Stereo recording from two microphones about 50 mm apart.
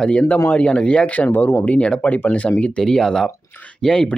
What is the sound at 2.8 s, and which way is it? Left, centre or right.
Speech, centre.